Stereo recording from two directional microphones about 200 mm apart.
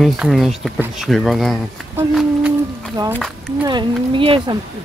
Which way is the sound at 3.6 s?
25° right (ahead or behind).